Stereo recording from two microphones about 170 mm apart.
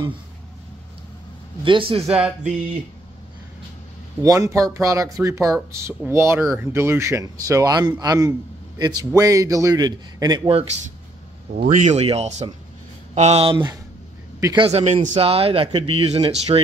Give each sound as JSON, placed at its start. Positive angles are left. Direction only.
{"t": 1.6, "sound": "speech", "side_deg": -30}
{"t": 4.2, "sound": "a man's voice", "side_deg": -20}
{"t": 11.5, "sound": "speech", "side_deg": -50}
{"t": 14.7, "sound": "speech", "side_deg": -35}